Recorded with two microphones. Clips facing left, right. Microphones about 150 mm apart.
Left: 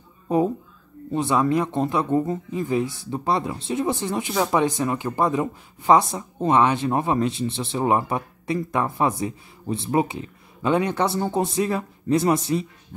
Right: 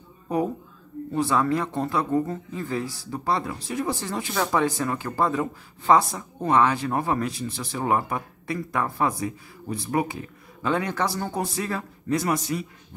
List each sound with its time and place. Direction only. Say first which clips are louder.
1.1 s speech: left 2 dB; 20° left (ahead or behind)